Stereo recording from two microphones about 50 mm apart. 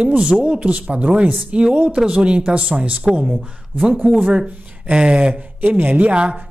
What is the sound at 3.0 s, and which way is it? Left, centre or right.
Speech, centre.